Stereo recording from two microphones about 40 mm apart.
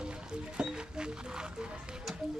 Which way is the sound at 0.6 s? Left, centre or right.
Right.